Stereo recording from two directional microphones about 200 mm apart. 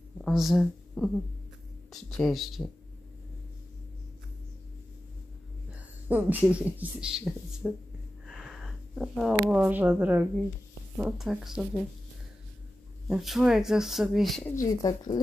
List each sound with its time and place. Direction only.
0.2 s speech: centre (ahead or behind)
6.0 s speech: 10° right (ahead or behind)
8.3 s a sound: 5° right (ahead or behind)
9.5 s speech: 5° right (ahead or behind)
13.1 s speech: centre (ahead or behind)
14.5 s speech: 15° left (ahead or behind)